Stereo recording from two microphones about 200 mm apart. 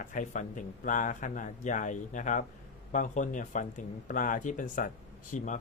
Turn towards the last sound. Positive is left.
turn(degrees=40)  # may be behind; listen again after turning